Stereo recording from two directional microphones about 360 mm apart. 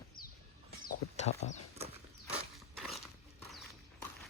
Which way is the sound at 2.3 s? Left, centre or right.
Centre.